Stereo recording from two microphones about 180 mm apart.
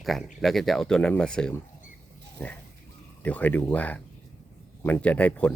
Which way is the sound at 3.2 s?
10° left (ahead or behind).